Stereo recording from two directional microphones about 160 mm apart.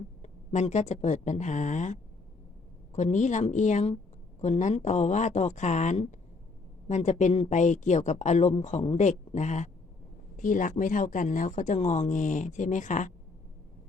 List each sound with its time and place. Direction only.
0.2 s speech: 45° left (ahead or behind)